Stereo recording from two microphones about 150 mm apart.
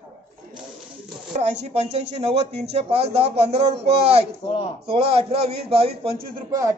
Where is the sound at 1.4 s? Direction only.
50° right (ahead or behind).